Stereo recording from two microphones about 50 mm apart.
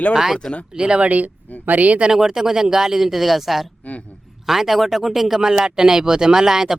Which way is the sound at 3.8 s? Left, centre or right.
Left.